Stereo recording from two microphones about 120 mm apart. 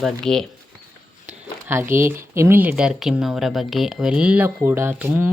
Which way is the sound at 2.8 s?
5° right (ahead or behind).